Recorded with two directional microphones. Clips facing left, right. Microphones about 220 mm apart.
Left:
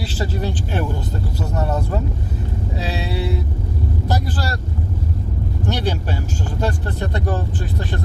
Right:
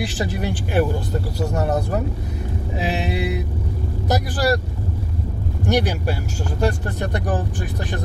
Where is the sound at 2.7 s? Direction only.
15° right (ahead or behind).